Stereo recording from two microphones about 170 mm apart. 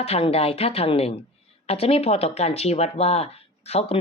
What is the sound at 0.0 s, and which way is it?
Speech, 35° left (ahead or behind).